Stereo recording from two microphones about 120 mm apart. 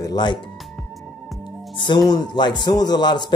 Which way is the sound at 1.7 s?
40° left (ahead or behind).